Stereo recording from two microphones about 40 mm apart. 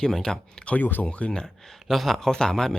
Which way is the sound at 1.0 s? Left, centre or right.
Left.